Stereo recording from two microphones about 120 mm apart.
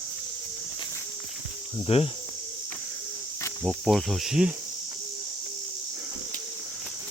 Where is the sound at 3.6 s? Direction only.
Centre (ahead or behind).